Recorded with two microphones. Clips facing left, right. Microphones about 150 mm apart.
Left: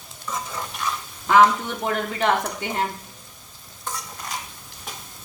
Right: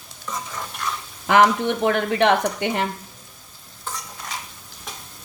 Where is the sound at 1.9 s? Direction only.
75° right (ahead or behind).